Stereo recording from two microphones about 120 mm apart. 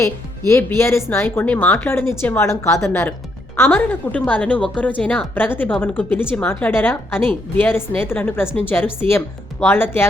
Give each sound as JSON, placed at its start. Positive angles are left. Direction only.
{"t": 0.0, "sound": "a woman's voice", "side_deg": 20}